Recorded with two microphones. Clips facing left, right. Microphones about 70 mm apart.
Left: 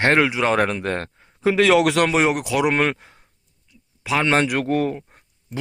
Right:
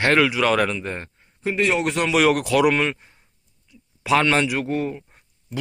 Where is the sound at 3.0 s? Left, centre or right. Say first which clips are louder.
Left 4 dB; left.